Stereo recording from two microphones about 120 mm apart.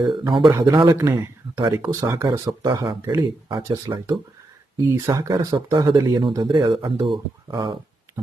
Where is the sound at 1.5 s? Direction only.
35° right (ahead or behind).